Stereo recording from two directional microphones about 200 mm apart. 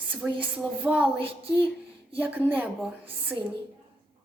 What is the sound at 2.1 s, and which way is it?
A woman's voice, 10° right (ahead or behind).